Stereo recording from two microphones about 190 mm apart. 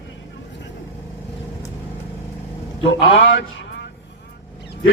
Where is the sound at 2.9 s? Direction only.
75° left (ahead or behind).